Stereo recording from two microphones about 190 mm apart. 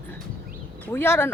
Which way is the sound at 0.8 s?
10° left (ahead or behind).